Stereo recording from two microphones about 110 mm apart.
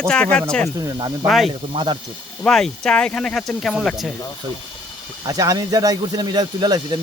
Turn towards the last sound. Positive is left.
turn(degrees=-40)  # may be behind; listen again after turning